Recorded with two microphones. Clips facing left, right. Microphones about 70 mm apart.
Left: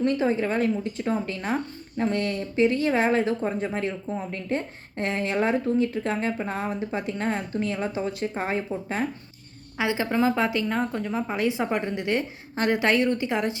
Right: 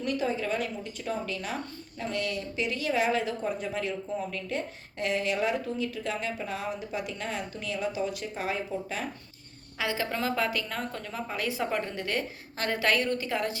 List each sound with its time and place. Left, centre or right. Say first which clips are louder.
0.0 s speech: left 6 dB; left
9.7 s a woman's voice: left 6 dB; left